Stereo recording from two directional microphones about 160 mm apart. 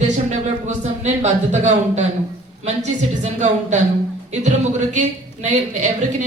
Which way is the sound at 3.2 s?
45° right (ahead or behind).